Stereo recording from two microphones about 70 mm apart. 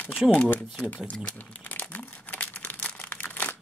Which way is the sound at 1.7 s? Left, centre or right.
Left.